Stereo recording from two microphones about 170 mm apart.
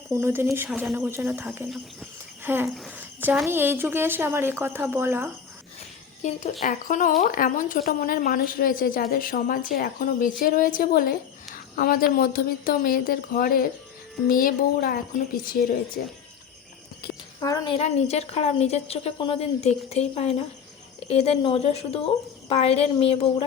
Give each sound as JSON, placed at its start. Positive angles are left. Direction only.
{"t": 0.1, "sound": "speech", "side_deg": -15}
{"t": 0.7, "sound": "a woman's voice", "side_deg": 0}
{"t": 0.9, "sound": "speech", "side_deg": -15}
{"t": 2.6, "sound": "a woman's voice", "side_deg": 0}
{"t": 3.0, "sound": "a sound", "side_deg": -10}
{"t": 3.5, "sound": "speech", "side_deg": -15}
{"t": 6.6, "sound": "a woman's voice", "side_deg": 50}
{"t": 17.7, "sound": "a woman's voice", "side_deg": 40}